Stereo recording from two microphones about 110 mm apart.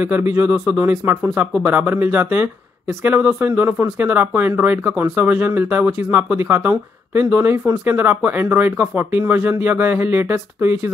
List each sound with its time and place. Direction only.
0.0 s speech: 20° right (ahead or behind)